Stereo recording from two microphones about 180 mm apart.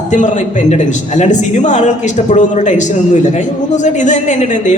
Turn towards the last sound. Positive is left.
turn(degrees=40)  # may be behind; listen again after turning